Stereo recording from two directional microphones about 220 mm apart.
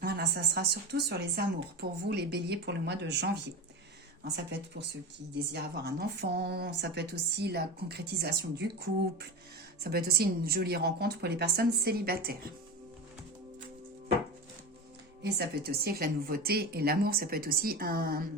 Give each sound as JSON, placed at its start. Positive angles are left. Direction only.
{"t": 0.0, "sound": "a woman's voice", "side_deg": -45}
{"t": 15.2, "sound": "a woman's voice", "side_deg": -45}